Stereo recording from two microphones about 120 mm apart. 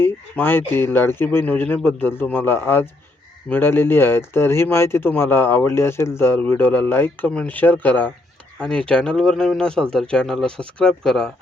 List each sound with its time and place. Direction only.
0.0 s speech: 15° left (ahead or behind)